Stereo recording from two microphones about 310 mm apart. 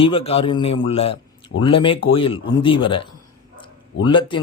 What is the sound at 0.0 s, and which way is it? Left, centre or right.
A man's voice, centre.